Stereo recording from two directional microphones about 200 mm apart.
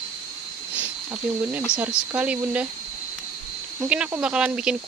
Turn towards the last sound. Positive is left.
turn(degrees=-5)  # may be behind; listen again after turning